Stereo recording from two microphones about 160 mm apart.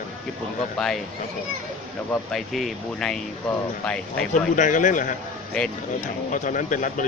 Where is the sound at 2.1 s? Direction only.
5° left (ahead or behind).